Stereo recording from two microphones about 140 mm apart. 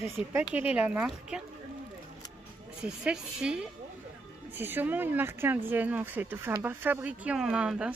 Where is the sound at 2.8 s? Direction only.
5° right (ahead or behind).